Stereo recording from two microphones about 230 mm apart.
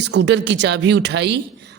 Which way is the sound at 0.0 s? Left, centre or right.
Right.